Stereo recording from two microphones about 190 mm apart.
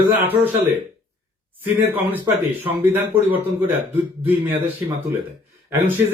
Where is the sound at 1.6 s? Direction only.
10° right (ahead or behind).